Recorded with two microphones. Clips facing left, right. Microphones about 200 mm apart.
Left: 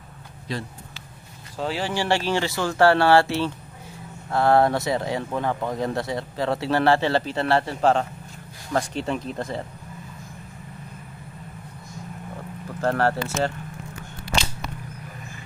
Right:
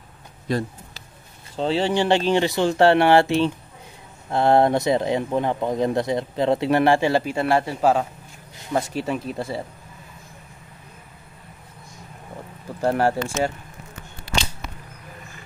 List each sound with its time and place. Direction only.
0.5 s a sound: 45° right (ahead or behind)
1.6 s speech: 25° right (ahead or behind); by 9.7 s 10° right (ahead or behind)
12.8 s speech: 15° right (ahead or behind)